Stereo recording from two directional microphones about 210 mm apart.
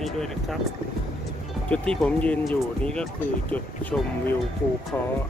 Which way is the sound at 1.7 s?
5° left (ahead or behind).